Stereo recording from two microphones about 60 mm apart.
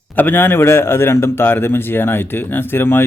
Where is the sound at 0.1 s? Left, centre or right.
Left.